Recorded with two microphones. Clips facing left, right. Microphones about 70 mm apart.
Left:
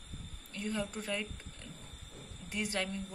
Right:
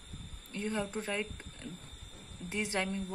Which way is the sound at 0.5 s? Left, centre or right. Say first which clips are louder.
Right 2 dB; right.